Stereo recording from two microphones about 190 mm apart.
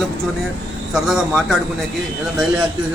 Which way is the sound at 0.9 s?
Centre (ahead or behind).